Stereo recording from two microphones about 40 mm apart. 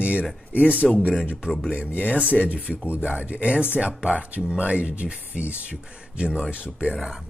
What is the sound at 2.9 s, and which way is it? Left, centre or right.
Speech, right.